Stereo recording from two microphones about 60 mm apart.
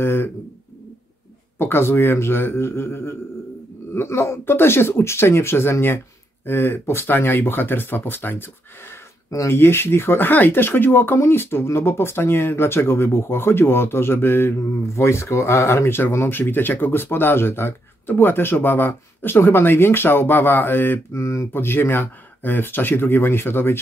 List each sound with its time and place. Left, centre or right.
0.0 s a sound: left
1.6 s speech: left
15.0 s speech: left
21.1 s mantra: left
21.5 s speech: left